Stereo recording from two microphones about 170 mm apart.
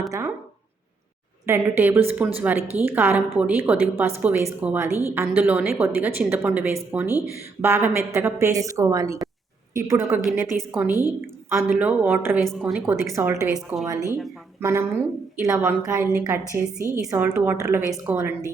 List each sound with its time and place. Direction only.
0.1 s a sound: 15° right (ahead or behind)
1.5 s a woman's voice: 15° right (ahead or behind)
10.6 s a woman's voice: 5° right (ahead or behind)
12.8 s a woman's voice: 15° right (ahead or behind)
13.5 s a woman's voice: 5° right (ahead or behind)
14.6 s a woman's voice: 15° right (ahead or behind)